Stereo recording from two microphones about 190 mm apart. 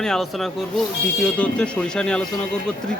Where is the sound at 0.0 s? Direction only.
Centre (ahead or behind).